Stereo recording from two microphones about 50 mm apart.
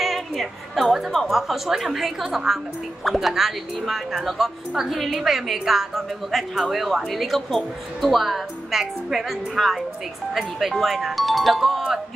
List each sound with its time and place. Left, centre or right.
0.0 s music: centre
1.1 s a woman's voice: centre